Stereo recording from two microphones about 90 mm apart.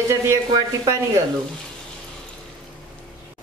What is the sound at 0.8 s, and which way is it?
Speech, 35° right (ahead or behind).